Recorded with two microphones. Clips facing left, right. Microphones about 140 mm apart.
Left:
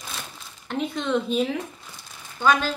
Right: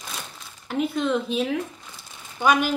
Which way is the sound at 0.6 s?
5° right (ahead or behind).